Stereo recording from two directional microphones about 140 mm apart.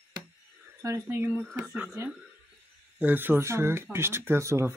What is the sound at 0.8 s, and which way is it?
Speech, 20° right (ahead or behind).